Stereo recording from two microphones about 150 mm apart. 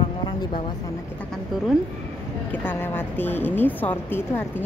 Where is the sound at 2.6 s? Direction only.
15° left (ahead or behind).